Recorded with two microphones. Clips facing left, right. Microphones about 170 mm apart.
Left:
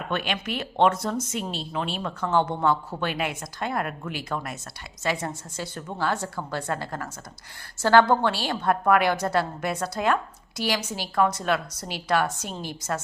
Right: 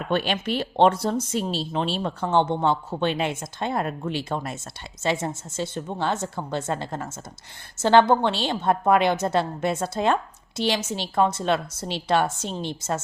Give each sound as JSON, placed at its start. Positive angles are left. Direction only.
{"t": 0.1, "sound": "speech", "side_deg": -30}